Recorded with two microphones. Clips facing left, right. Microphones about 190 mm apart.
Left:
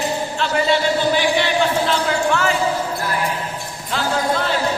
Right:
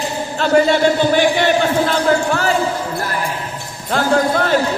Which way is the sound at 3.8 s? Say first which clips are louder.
Right 5 dB; 50° right (ahead or behind).